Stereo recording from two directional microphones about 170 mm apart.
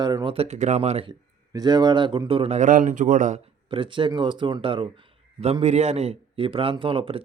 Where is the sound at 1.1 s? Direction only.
25° right (ahead or behind); by 3.4 s 50° right (ahead or behind).